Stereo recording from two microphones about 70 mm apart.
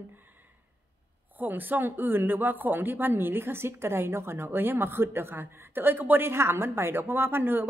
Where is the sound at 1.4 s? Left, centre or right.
Right.